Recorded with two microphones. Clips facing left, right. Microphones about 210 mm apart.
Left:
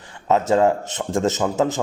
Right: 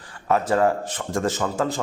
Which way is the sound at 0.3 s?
20° left (ahead or behind).